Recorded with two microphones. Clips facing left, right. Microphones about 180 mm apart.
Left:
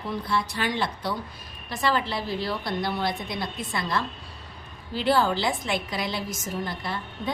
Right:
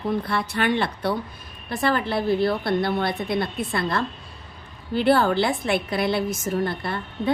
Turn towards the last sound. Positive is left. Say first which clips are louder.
# right 6 dB
turn(degrees=-60)  # may be behind; listen again after turning